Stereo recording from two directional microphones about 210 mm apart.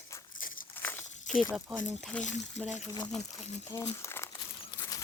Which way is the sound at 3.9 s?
10° left (ahead or behind).